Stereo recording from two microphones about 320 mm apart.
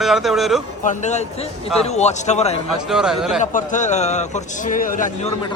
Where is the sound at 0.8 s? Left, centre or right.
Left.